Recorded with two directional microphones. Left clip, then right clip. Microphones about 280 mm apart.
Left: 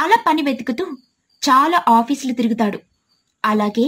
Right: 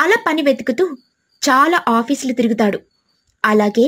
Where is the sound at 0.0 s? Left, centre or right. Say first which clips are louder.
Right 1 dB; centre.